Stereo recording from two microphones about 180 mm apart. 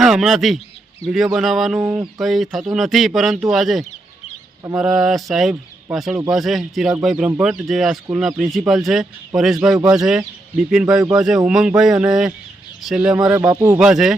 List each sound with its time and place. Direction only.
0.0 s a man's voice: centre (ahead or behind)
1.8 s a sound: 15° right (ahead or behind)
2.1 s speech: centre (ahead or behind)
13.4 s speech: 20° right (ahead or behind)
13.7 s speech: 5° right (ahead or behind)